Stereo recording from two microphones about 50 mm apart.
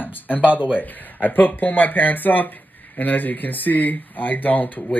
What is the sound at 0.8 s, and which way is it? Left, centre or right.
Speech, left.